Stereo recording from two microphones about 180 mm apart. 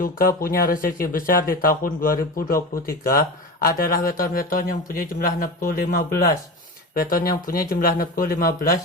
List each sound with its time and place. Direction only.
0.0 s speech: 55° left (ahead or behind)